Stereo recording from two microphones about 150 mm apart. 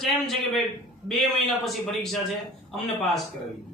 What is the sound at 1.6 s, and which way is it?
A man's voice, centre (ahead or behind).